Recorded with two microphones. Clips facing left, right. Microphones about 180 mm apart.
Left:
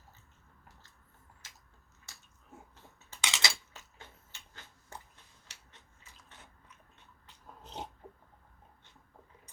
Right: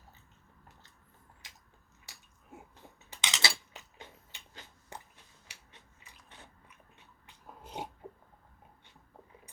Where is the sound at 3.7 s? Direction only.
15° right (ahead or behind).